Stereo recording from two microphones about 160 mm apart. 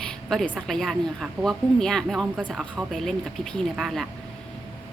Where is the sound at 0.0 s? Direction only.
5° left (ahead or behind).